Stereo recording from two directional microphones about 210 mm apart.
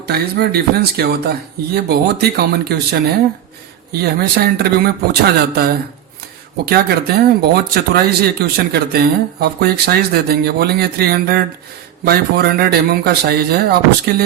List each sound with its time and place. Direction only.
0.0 s speech: 50° right (ahead or behind)
3.9 s speech: 45° right (ahead or behind)